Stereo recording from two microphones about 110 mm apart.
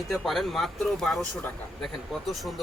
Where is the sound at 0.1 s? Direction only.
Centre (ahead or behind).